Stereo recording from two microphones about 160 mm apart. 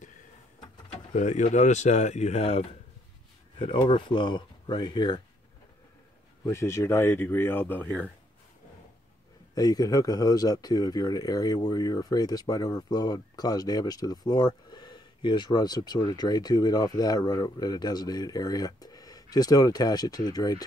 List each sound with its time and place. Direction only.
0.9 s speech: 50° left (ahead or behind); by 5.2 s 25° left (ahead or behind)
6.4 s speech: 15° left (ahead or behind)
9.6 s speech: 25° left (ahead or behind)